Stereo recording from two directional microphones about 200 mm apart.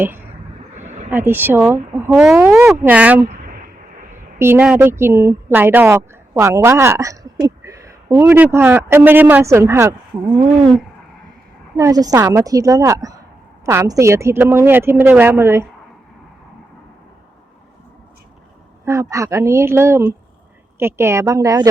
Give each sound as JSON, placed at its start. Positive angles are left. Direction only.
{"t": 0.0, "sound": "a sound", "side_deg": -10}
{"t": 0.9, "sound": "a sound", "side_deg": -35}
{"t": 1.1, "sound": "a woman's voice", "side_deg": -10}
{"t": 4.4, "sound": "speech", "side_deg": -10}
{"t": 11.8, "sound": "a woman's voice", "side_deg": -20}
{"t": 18.9, "sound": "a woman's voice", "side_deg": -15}